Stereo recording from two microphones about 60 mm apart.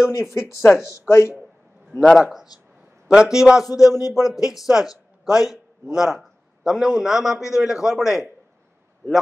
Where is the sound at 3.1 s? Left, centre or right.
Centre.